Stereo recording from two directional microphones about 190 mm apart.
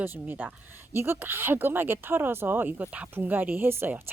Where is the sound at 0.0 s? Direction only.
10° right (ahead or behind).